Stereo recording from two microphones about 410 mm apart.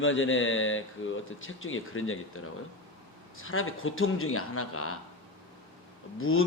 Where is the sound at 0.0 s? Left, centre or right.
Left.